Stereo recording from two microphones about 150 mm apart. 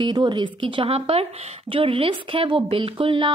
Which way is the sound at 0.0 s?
30° right (ahead or behind).